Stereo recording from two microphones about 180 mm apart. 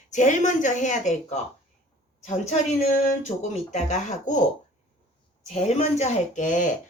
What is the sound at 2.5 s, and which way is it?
Speech, 40° left (ahead or behind).